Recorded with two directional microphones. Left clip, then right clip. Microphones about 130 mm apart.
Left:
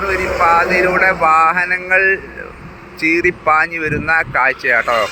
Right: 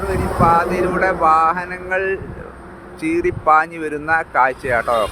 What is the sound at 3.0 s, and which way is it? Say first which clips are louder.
Speech: left 4 dB; 10° right (ahead or behind).